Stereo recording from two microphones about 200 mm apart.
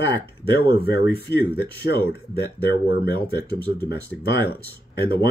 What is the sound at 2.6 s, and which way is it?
Speech, 55° left (ahead or behind).